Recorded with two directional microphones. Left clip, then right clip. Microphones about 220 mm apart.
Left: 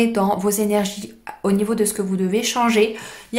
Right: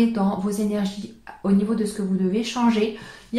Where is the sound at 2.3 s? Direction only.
40° left (ahead or behind).